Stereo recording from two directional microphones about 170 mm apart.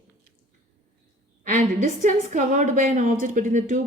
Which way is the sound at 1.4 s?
50° right (ahead or behind).